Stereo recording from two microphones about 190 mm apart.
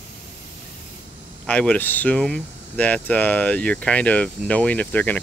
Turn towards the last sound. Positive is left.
turn(degrees=10)  # may be behind; listen again after turning